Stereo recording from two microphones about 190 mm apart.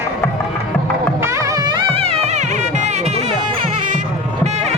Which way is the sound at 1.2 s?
15° right (ahead or behind).